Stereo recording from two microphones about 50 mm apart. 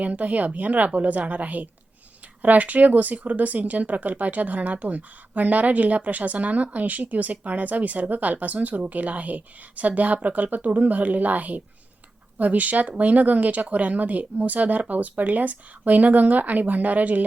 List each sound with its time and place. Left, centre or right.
0.0 s speech: right